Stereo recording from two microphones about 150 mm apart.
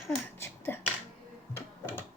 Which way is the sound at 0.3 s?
15° left (ahead or behind).